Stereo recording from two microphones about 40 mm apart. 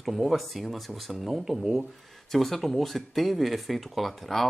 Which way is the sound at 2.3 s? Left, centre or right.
Centre.